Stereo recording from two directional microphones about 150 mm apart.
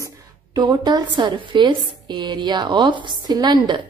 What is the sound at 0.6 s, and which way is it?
A woman's voice, 30° right (ahead or behind).